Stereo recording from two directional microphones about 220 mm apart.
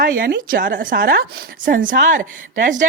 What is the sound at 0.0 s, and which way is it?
Speech, 40° right (ahead or behind).